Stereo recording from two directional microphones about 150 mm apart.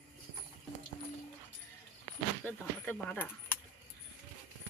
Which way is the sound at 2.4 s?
15° left (ahead or behind).